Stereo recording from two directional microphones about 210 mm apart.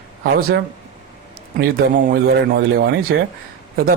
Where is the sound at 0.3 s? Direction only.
45° right (ahead or behind).